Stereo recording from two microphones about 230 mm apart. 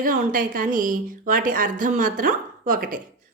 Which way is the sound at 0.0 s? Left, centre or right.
Right.